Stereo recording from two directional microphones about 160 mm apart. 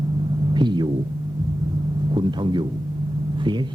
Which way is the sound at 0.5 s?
30° right (ahead or behind).